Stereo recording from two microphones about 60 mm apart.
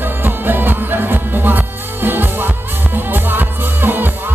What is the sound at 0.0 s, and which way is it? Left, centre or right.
Music, right.